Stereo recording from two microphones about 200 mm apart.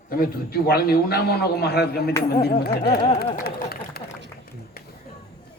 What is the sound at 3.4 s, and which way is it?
Speech, 50° left (ahead or behind).